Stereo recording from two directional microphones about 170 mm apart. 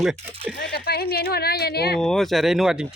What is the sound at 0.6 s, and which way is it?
Speech, 70° left (ahead or behind).